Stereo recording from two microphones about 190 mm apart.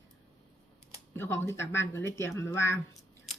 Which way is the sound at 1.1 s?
15° left (ahead or behind).